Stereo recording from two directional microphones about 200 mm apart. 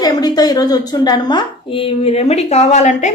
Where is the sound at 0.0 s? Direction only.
20° left (ahead or behind).